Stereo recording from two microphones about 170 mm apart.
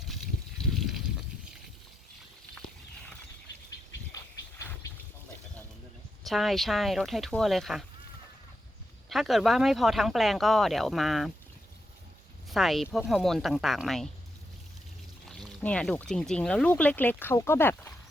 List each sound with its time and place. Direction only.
0.7 s a sound: centre (ahead or behind)
4.1 s vehicle: 20° left (ahead or behind)
6.2 s speech: centre (ahead or behind)
9.0 s speech: centre (ahead or behind)
12.5 s speech: centre (ahead or behind)
15.3 s speech: centre (ahead or behind)